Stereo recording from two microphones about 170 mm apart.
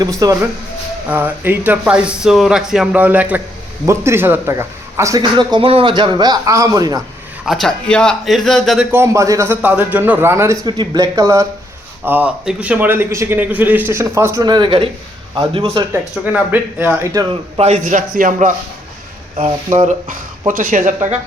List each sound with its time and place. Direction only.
0.0 s a man's voice: 20° right (ahead or behind)
1.1 s a man's voice: 10° right (ahead or behind)
7.4 s a man's voice: centre (ahead or behind)
8.9 s a man's voice: 15° right (ahead or behind)
9.6 s a man's voice: 10° right (ahead or behind); by 15.9 s 30° right (ahead or behind)
15.9 s a man's voice: 10° right (ahead or behind)
17.6 s a man's voice: 40° right (ahead or behind)
20.5 s speech: 55° right (ahead or behind)